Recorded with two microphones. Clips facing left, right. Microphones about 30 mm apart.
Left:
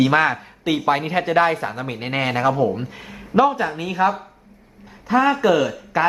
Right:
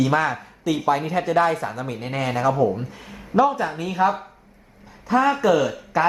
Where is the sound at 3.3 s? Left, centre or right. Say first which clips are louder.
Left 2 dB; left.